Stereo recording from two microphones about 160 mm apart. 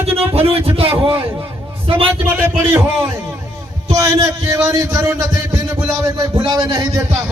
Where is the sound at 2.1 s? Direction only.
15° right (ahead or behind).